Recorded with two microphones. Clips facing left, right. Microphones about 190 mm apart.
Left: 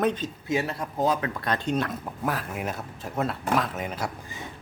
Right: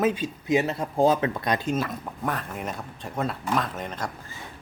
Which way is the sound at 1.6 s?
5° right (ahead or behind).